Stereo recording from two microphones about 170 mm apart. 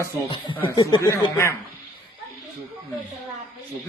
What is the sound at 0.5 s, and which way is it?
A man's voice, 20° left (ahead or behind).